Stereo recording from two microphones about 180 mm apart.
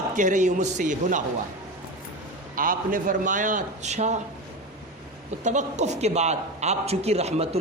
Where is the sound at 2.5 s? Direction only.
50° right (ahead or behind).